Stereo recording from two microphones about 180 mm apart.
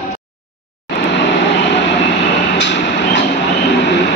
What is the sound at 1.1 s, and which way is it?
Vehicle, 80° left.